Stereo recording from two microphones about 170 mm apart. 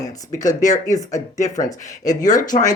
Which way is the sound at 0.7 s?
20° left (ahead or behind).